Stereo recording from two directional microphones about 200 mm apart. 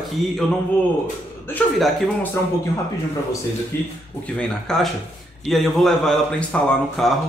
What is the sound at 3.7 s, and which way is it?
A man's voice, 10° left (ahead or behind).